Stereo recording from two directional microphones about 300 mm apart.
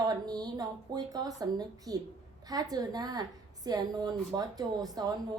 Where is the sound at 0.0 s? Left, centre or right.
Centre.